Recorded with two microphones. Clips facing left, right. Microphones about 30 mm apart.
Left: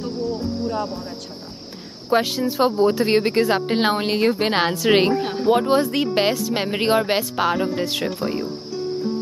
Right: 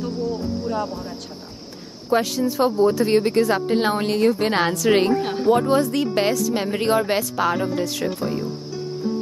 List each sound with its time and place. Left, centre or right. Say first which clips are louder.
0.7 s speech: right 1 dB; centre
2.0 s speech: left 1 dB; left
5.1 s speech: right 1 dB; centre
5.5 s speech: even; left